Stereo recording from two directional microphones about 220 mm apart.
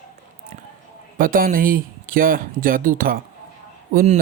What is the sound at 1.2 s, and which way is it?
Speech, 40° right (ahead or behind).